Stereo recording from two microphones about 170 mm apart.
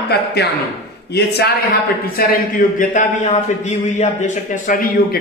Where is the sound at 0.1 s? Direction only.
70° left (ahead or behind).